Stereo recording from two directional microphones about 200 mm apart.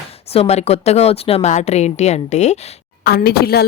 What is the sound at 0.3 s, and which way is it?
Speech, 30° left (ahead or behind).